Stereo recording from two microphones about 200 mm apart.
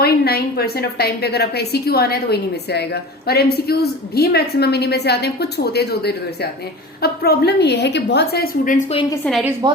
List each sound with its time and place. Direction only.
0.0 s a woman's voice: 50° left (ahead or behind)
9.2 s a woman's voice: 5° left (ahead or behind)
9.6 s speech: 20° right (ahead or behind)